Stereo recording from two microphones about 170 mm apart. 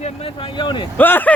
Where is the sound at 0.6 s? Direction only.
30° left (ahead or behind).